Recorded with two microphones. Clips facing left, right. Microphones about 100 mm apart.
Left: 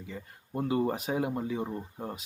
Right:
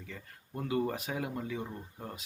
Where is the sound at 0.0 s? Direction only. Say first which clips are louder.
Left 5 dB; 20° left (ahead or behind).